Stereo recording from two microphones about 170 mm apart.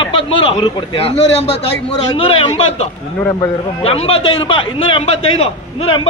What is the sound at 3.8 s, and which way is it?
A man's voice, 35° left (ahead or behind).